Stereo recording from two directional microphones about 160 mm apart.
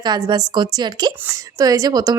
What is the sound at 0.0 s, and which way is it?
Speech, 25° right (ahead or behind).